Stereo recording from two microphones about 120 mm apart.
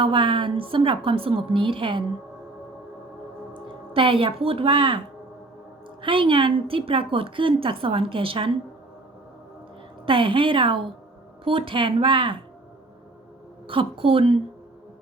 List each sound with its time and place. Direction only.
0.0 s a woman's voice: 45° right (ahead or behind)
3.5 s speech: 50° right (ahead or behind)
6.0 s a woman's voice: 45° right (ahead or behind)
10.1 s a woman's voice: 45° right (ahead or behind)
13.7 s a woman's voice: 50° right (ahead or behind)